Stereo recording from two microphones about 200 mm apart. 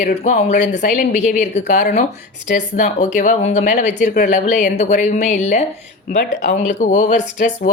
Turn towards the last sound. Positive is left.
turn(degrees=35)  # may be behind; listen again after turning